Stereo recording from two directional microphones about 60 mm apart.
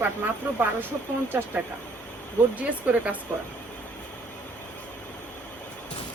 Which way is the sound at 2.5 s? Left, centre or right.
Right.